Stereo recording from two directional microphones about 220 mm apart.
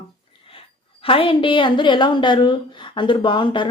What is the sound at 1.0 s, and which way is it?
A woman's voice, 25° left (ahead or behind).